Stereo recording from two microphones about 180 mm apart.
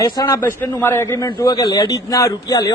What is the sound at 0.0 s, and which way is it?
A man's voice, 20° left (ahead or behind).